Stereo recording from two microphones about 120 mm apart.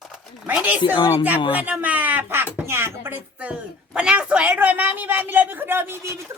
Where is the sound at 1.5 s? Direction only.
10° right (ahead or behind).